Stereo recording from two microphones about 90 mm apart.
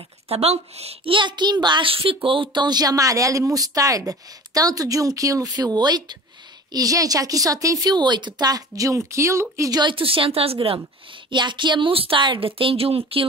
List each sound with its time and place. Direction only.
0.3 s a woman's voice: 90° right
1.0 s a child's voice: 65° right (ahead or behind); by 2.1 s 90° right
2.2 s speech: 70° right (ahead or behind); by 6.1 s 55° right (ahead or behind)
6.7 s speech: 40° right (ahead or behind)
9.8 s a woman's voice: 70° right (ahead or behind); by 10.8 s 90° right
11.2 s a woman's voice: 60° right (ahead or behind); by 13.2 s 90° right